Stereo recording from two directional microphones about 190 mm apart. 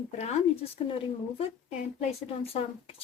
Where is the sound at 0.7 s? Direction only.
30° left (ahead or behind).